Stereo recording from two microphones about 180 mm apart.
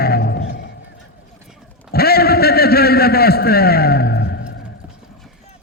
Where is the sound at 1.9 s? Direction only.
60° left (ahead or behind); by 4.5 s 75° left (ahead or behind).